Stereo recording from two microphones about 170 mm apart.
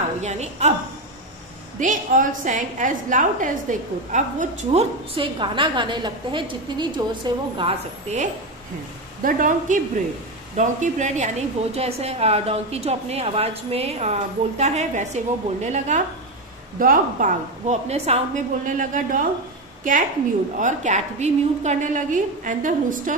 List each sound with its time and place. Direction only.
0.2 s a woman's voice: 40° right (ahead or behind)
1.8 s a woman's voice: 50° right (ahead or behind); by 7.7 s 25° right (ahead or behind)
8.1 s a woman's voice: 40° right (ahead or behind)